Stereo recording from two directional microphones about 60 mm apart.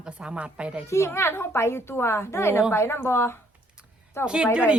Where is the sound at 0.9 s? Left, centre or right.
Left.